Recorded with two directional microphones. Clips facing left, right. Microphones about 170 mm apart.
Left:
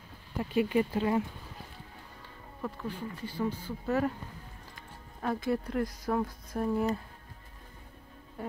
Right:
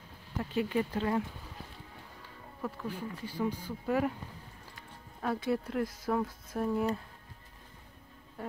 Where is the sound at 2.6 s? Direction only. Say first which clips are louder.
Left 1 dB; 5° right (ahead or behind).